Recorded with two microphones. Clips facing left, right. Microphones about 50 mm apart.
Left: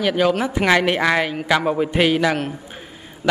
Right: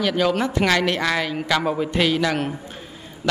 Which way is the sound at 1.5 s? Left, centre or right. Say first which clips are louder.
Left 3 dB; centre.